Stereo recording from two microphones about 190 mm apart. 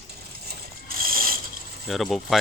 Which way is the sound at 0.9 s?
50° right (ahead or behind).